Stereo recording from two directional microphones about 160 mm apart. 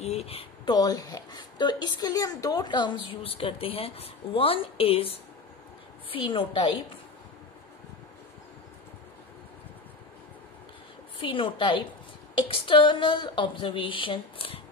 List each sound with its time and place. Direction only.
0.0 s a sound: 40° left (ahead or behind)
0.7 s a woman's voice: 25° left (ahead or behind)
11.1 s speech: 30° left (ahead or behind)